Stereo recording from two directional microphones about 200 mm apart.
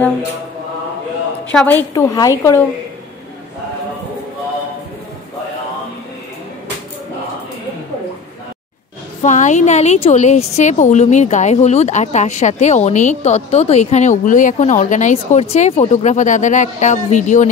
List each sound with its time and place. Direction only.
1.5 s a woman's voice: 5° left (ahead or behind)
9.2 s speech: 35° left (ahead or behind)